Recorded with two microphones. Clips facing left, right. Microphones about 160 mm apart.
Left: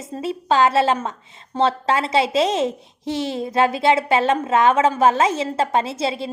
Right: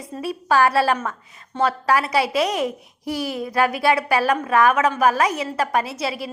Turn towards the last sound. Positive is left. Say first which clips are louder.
# left 3 dB
turn(degrees=25)  # may be behind; listen again after turning